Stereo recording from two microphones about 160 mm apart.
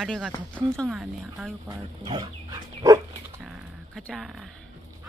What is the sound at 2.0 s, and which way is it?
Dog, 25° right (ahead or behind).